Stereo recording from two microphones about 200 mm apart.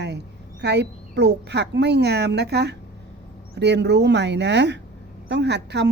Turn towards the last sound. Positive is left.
turn(degrees=-60)  # may be behind; listen again after turning